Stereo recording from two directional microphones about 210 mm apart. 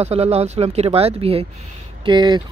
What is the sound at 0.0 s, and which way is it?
A man's voice, 30° right (ahead or behind).